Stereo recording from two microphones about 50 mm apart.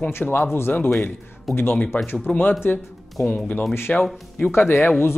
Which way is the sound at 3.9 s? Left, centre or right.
Left.